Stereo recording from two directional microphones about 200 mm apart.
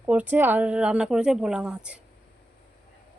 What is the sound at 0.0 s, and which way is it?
Speech, 10° right (ahead or behind).